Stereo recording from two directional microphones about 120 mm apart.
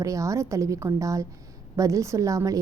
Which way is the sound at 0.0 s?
25° right (ahead or behind).